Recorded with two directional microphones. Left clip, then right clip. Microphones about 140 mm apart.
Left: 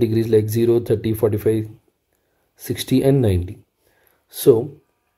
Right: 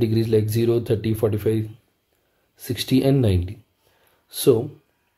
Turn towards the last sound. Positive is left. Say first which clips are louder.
# left 4 dB
turn(degrees=30)  # may be behind; listen again after turning